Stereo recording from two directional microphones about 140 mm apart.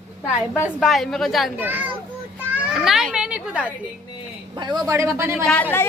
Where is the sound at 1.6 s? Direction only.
10° right (ahead or behind).